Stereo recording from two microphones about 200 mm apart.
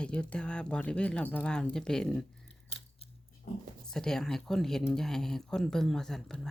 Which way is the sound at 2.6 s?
30° left (ahead or behind).